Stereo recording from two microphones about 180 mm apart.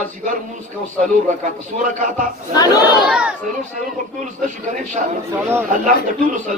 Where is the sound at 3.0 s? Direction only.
5° right (ahead or behind).